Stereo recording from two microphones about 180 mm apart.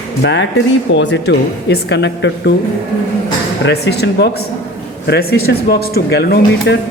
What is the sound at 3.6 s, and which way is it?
A woman's voice, 65° left (ahead or behind).